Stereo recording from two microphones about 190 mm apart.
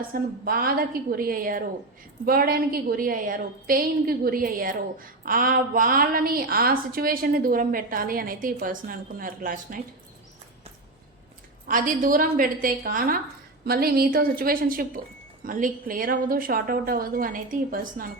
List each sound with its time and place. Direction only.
0.1 s a woman's voice: 50° right (ahead or behind)
11.6 s a woman's voice: 45° right (ahead or behind)